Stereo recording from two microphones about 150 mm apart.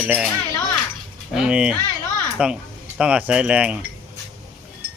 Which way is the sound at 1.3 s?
5° right (ahead or behind).